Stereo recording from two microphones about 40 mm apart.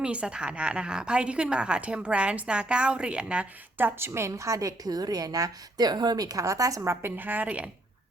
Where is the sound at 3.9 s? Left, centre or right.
Right.